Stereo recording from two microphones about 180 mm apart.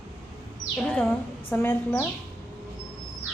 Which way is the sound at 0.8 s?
5° left (ahead or behind).